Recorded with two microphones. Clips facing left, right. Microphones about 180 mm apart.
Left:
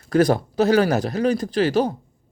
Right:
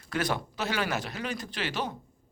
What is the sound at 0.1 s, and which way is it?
Speech, 40° left (ahead or behind).